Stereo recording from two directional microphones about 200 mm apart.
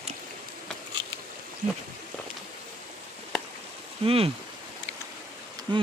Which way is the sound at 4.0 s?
30° right (ahead or behind).